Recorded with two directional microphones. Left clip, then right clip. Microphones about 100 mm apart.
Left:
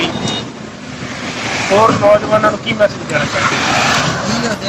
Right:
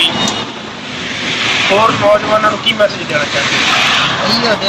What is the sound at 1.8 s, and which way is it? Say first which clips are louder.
Speech: even; 30° left (ahead or behind).